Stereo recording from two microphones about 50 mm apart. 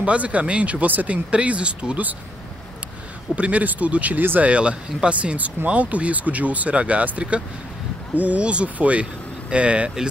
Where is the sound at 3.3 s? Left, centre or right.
Right.